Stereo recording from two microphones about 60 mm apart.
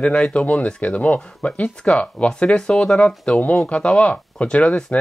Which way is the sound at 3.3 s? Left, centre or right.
Left.